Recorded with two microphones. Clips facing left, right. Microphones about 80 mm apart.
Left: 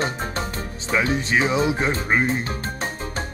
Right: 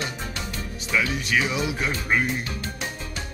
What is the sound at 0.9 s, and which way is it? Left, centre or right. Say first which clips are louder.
Speech: left 3 dB; left.